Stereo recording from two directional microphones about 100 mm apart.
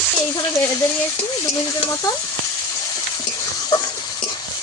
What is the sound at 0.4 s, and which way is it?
Speech, 30° left (ahead or behind).